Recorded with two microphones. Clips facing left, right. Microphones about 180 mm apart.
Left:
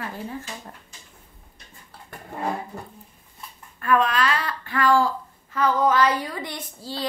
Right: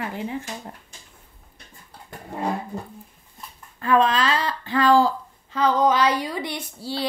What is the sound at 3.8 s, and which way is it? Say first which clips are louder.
A woman's voice: right 2 dB; 25° right (ahead or behind).